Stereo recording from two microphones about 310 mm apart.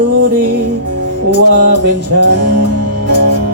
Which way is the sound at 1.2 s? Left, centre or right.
Right.